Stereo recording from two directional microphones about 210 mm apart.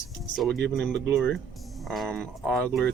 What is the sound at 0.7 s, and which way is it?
Speech, centre (ahead or behind).